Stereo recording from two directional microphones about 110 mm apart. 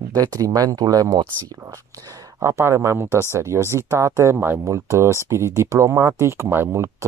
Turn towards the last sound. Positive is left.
turn(degrees=-25)  # may be behind; listen again after turning